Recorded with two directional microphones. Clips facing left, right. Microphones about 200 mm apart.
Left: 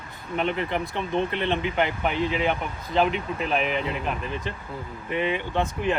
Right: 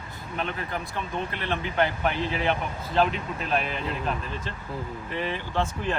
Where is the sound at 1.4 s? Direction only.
20° left (ahead or behind).